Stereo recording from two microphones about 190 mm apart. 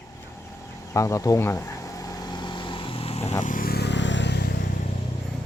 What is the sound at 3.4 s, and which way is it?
Vehicle, 45° left (ahead or behind).